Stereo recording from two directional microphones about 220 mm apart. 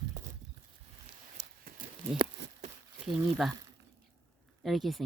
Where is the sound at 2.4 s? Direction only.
50° right (ahead or behind).